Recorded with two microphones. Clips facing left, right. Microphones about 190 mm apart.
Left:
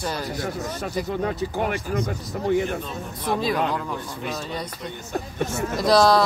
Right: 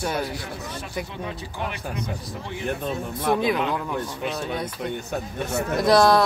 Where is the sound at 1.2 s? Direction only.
50° left (ahead or behind).